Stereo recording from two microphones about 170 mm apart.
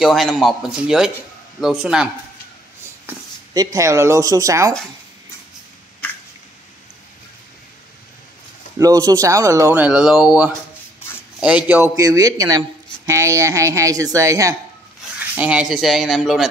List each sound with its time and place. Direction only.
0.0 s speech: centre (ahead or behind)
3.5 s speech: 20° right (ahead or behind)
8.7 s speech: 20° right (ahead or behind)
15.1 s speech: 10° right (ahead or behind)